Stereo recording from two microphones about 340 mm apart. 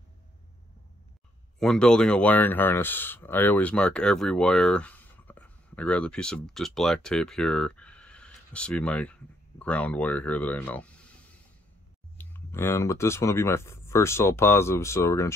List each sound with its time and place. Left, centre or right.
1.6 s speech: centre
12.2 s speech: centre